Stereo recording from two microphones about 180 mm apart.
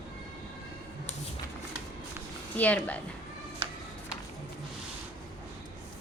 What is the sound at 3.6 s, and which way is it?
Music, 30° right (ahead or behind).